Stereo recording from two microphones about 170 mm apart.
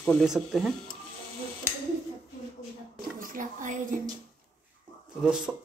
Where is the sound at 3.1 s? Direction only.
50° right (ahead or behind).